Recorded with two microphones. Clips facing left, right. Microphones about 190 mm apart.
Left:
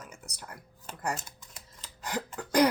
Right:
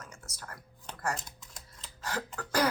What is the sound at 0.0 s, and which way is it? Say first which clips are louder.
Whispering: left 1 dB; 15° left (ahead or behind).